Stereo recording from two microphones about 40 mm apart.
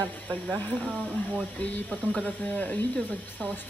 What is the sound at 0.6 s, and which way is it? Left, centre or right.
Speech, left.